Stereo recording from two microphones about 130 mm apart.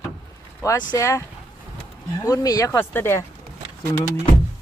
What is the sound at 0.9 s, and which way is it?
Speech, 25° left (ahead or behind).